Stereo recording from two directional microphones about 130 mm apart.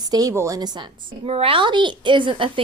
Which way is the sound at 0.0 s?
30° right (ahead or behind).